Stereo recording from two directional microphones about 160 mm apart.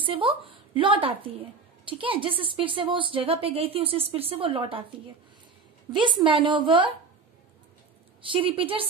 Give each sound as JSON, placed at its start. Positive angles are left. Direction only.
{"t": 0.0, "sound": "a woman's voice", "side_deg": -35}
{"t": 5.9, "sound": "a woman's voice", "side_deg": -30}
{"t": 8.2, "sound": "a woman's voice", "side_deg": -35}